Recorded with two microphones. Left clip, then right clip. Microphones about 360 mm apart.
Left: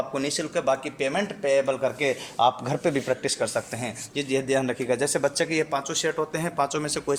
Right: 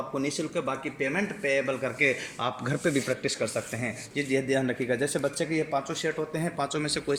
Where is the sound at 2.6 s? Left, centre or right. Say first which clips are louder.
Left 3 dB; left.